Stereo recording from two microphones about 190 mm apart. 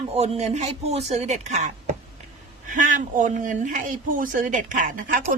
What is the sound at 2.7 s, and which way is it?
Speech, 45° right (ahead or behind).